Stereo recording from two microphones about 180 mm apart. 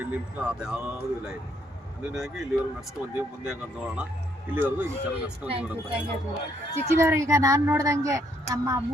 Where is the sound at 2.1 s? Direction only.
Centre (ahead or behind).